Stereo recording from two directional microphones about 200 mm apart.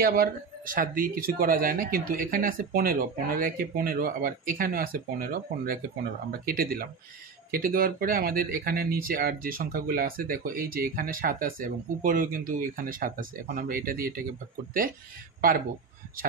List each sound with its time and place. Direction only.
0.0 s speech: 50° right (ahead or behind)
15.4 s speech: 45° right (ahead or behind)